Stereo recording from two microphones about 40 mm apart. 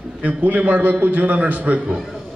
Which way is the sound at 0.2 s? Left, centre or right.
Right.